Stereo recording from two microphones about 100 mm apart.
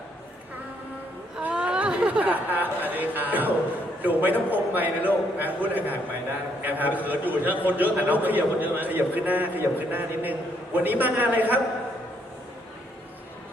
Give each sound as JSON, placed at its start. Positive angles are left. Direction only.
{"t": 1.4, "sound": "a man's voice", "side_deg": -10}